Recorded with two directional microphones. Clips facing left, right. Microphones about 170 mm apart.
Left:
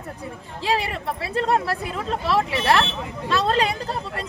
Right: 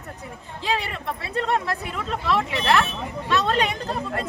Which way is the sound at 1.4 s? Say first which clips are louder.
Left 2 dB; 35° left (ahead or behind).